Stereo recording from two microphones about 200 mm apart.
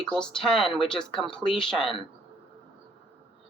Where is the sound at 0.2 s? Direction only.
5° left (ahead or behind).